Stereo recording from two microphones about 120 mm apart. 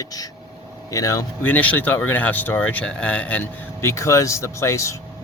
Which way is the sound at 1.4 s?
10° left (ahead or behind).